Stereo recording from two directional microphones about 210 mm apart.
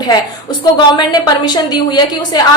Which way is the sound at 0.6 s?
20° left (ahead or behind).